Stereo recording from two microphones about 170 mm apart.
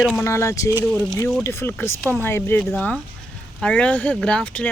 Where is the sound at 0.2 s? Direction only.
15° left (ahead or behind).